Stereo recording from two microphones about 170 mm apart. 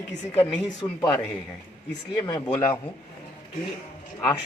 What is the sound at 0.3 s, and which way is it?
Speech, centre (ahead or behind).